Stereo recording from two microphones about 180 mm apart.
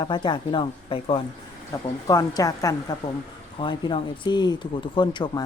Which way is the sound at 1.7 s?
20° left (ahead or behind).